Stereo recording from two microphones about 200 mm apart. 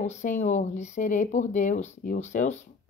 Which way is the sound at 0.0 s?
35° left (ahead or behind).